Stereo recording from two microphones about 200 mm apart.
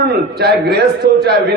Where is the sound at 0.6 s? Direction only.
55° right (ahead or behind).